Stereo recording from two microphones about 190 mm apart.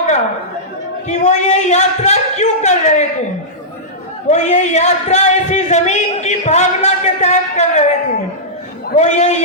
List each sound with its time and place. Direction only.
1.0 s speech: 40° left (ahead or behind)
4.3 s speech: 40° left (ahead or behind)
9.0 s speech: 35° left (ahead or behind)